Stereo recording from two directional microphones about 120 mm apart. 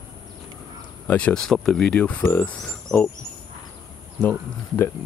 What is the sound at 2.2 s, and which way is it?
Speech, 20° left (ahead or behind).